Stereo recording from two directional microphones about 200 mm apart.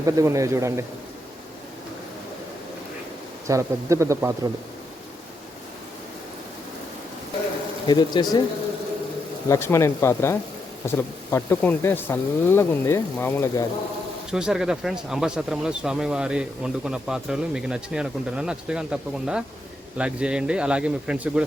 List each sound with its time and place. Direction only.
0.0 s a man's voice: 15° right (ahead or behind)
3.4 s a man's voice: 15° right (ahead or behind)
7.9 s speech: 20° left (ahead or behind)
9.5 s speech: 15° left (ahead or behind)
14.3 s speech: 5° right (ahead or behind)